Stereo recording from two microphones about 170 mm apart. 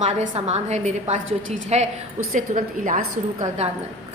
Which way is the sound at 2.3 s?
50° right (ahead or behind).